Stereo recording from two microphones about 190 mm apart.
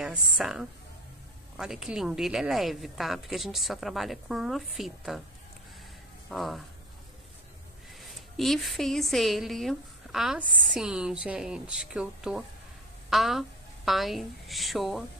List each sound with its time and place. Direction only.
0.0 s a woman's voice: centre (ahead or behind)
6.3 s a woman's voice: centre (ahead or behind)
8.0 s a woman's voice: centre (ahead or behind)